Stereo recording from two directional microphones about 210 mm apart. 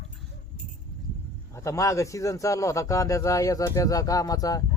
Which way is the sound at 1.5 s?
15° left (ahead or behind).